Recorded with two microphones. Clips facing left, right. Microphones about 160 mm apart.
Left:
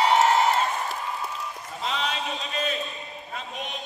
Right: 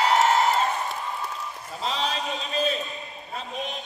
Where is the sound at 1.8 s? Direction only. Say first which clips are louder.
Right 1 dB; 35° right (ahead or behind).